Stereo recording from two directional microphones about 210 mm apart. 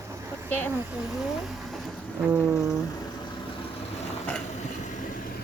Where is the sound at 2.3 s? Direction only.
15° right (ahead or behind).